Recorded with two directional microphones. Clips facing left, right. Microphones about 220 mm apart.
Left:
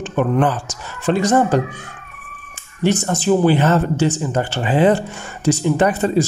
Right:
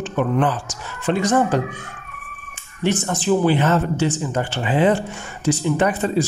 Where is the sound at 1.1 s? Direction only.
40° left (ahead or behind).